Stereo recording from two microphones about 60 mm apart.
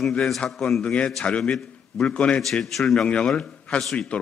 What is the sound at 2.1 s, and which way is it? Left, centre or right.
A man's voice, centre.